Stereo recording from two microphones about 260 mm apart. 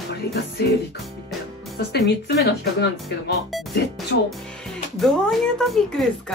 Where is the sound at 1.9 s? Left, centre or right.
Left.